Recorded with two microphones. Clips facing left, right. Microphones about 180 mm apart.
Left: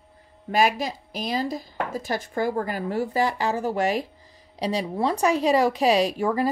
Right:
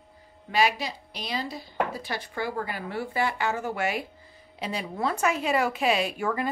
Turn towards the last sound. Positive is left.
turn(degrees=35)  # may be behind; listen again after turning